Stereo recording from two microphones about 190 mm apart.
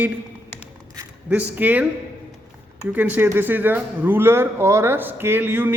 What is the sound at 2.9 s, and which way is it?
A man's voice, 10° right (ahead or behind).